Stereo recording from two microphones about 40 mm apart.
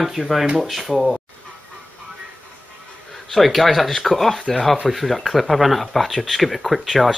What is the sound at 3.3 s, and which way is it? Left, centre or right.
Speech, centre.